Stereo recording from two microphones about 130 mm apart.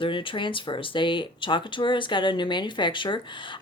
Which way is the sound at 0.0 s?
40° left (ahead or behind).